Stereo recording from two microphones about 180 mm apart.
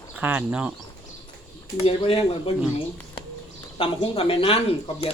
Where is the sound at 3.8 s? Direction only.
30° left (ahead or behind).